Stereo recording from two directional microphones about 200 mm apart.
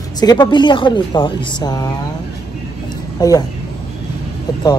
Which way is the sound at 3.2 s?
20° left (ahead or behind).